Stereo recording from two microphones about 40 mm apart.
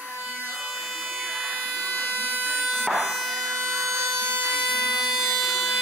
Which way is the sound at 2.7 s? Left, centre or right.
Right.